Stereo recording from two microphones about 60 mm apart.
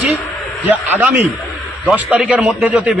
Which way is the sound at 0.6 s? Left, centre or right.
Right.